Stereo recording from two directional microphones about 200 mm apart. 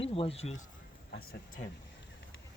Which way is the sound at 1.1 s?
50° left (ahead or behind).